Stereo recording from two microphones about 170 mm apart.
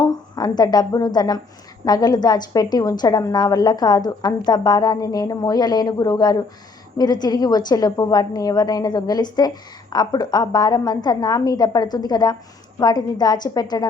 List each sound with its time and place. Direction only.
0.0 s a woman's voice: 25° left (ahead or behind)